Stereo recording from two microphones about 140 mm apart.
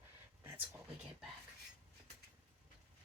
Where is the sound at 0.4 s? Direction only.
20° right (ahead or behind).